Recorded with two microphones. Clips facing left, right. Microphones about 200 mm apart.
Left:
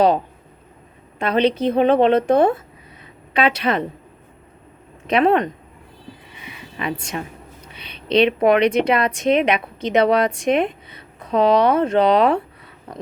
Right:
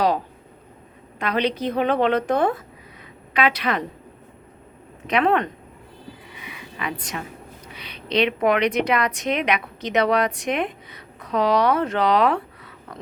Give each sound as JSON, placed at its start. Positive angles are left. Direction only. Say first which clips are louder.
{"t": 1.2, "sound": "a woman's voice", "louder": "left 5 dB", "side_deg": 25}
{"t": 5.0, "sound": "a woman's voice", "louder": "left 4 dB", "side_deg": 25}
{"t": 6.4, "sound": "a sound", "louder": "left 4 dB", "side_deg": 30}
{"t": 7.8, "sound": "a woman's voice", "louder": "left 5 dB", "side_deg": 25}